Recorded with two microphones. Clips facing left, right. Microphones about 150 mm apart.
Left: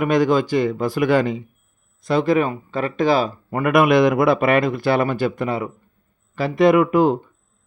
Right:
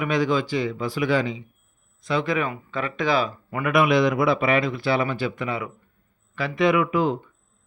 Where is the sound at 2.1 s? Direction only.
40° left (ahead or behind).